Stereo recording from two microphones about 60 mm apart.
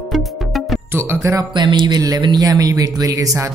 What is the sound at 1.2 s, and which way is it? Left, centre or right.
Speech, right.